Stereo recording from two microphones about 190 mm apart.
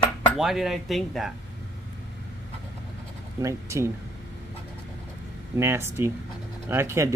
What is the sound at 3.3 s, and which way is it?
Speech, 15° right (ahead or behind).